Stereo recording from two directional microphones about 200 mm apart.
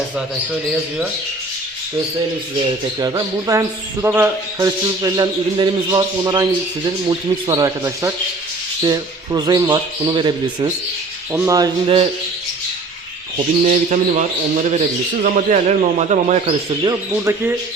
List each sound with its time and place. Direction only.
3.0 s speech: 20° right (ahead or behind)
13.3 s a man's voice: 35° right (ahead or behind)
16.8 s speech: 15° right (ahead or behind)